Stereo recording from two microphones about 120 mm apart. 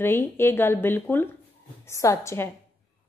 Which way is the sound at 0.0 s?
20° left (ahead or behind).